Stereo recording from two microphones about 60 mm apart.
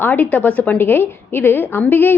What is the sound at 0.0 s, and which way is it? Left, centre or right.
Speech, left.